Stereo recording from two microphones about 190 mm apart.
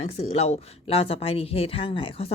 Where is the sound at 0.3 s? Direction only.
35° left (ahead or behind).